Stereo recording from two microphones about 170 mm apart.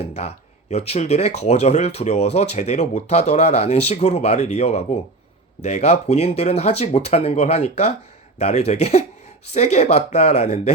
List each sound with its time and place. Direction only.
0.0 s speech: 40° left (ahead or behind)